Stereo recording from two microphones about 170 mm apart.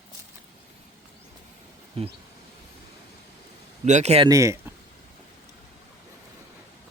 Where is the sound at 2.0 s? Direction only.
35° right (ahead or behind).